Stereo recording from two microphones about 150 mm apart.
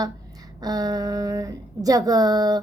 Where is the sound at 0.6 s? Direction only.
25° right (ahead or behind).